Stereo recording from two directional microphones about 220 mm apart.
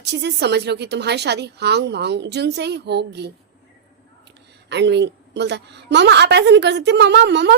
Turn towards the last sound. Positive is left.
turn(degrees=-50)  # may be behind; listen again after turning